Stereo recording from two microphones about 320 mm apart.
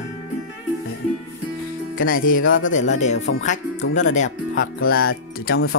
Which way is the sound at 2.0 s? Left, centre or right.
Left.